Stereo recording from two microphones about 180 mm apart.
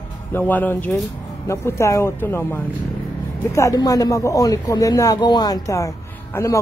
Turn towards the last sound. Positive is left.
turn(degrees=15)  # may be behind; listen again after turning